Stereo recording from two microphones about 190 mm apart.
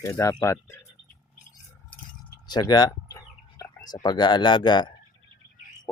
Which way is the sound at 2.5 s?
20° left (ahead or behind).